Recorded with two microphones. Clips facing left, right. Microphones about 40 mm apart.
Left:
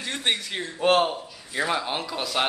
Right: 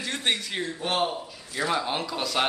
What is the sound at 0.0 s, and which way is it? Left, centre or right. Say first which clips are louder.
Speech: left 1 dB; centre.